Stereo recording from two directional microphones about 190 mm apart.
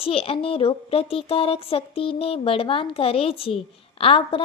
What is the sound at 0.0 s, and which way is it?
Child singing, 30° left (ahead or behind).